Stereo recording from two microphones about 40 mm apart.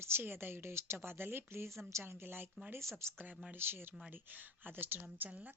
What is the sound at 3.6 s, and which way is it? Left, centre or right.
Speech, right.